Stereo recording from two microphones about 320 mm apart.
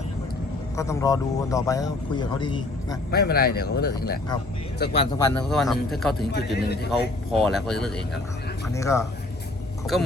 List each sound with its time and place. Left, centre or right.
0.8 s speech: centre
3.1 s speech: left
4.9 s a man's voice: centre
6.3 s a man's voice: left
7.3 s a man's voice: centre